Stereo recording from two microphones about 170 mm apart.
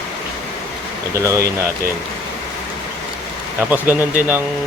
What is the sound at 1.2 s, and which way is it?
Speech, 15° right (ahead or behind).